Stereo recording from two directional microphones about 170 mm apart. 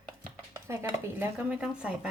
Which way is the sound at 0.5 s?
15° right (ahead or behind).